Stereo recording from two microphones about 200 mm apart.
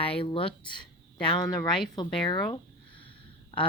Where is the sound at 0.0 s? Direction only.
25° left (ahead or behind).